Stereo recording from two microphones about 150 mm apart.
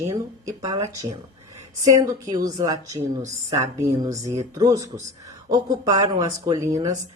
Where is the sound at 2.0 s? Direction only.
25° right (ahead or behind).